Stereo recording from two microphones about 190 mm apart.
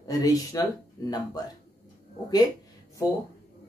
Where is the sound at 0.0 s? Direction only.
20° left (ahead or behind).